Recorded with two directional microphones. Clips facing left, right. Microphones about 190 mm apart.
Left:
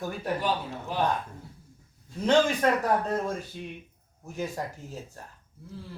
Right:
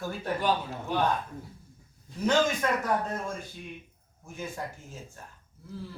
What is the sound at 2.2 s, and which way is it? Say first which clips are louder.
Speech: left 3 dB; 35° left (ahead or behind).